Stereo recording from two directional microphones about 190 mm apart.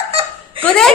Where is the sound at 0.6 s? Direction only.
5° left (ahead or behind).